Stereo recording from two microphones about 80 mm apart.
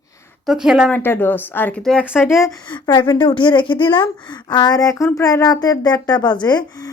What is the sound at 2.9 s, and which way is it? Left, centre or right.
A woman's voice, left.